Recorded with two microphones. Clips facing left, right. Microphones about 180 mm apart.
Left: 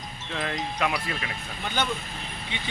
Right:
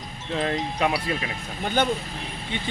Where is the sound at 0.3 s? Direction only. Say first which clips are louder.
Right 4 dB; 30° right (ahead or behind).